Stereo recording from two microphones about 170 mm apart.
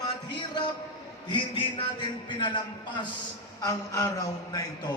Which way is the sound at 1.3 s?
30° left (ahead or behind).